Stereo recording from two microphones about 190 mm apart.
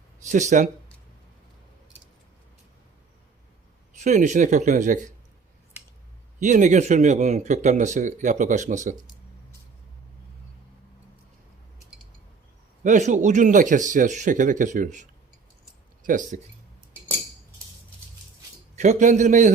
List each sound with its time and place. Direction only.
0.3 s speech: 40° right (ahead or behind)
4.0 s speech: 40° right (ahead or behind)
6.4 s speech: 40° right (ahead or behind)
12.8 s speech: 40° right (ahead or behind)
16.0 s speech: 40° right (ahead or behind)
18.8 s speech: 40° right (ahead or behind)